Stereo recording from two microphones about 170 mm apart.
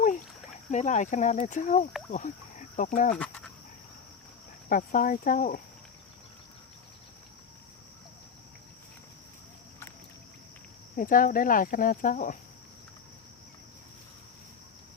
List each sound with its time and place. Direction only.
0.7 s speech: 45° left (ahead or behind)
3.2 s dog: 5° left (ahead or behind)
4.7 s speech: 50° left (ahead or behind)
10.9 s speech: 55° left (ahead or behind)